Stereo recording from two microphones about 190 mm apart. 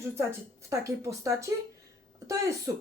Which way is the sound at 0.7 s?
15° right (ahead or behind).